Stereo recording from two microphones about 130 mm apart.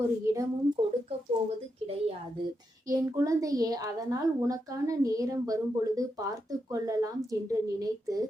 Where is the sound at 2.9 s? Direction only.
25° right (ahead or behind).